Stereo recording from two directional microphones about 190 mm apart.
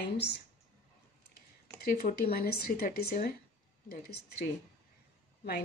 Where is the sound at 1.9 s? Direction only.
50° left (ahead or behind).